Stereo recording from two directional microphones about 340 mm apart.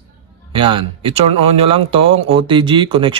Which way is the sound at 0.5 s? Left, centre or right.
Centre.